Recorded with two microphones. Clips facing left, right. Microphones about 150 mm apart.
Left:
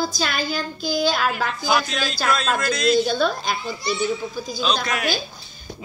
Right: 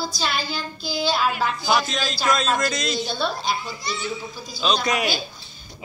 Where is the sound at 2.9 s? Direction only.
50° left (ahead or behind).